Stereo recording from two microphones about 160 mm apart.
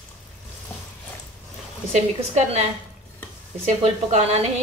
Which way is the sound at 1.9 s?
50° right (ahead or behind).